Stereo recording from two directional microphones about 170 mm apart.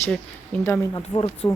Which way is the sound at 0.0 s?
10° left (ahead or behind).